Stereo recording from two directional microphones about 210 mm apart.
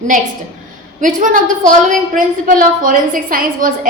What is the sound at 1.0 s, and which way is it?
A woman's voice, 40° right (ahead or behind).